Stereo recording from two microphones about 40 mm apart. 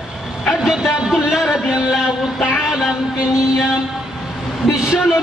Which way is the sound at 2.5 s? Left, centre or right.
Centre.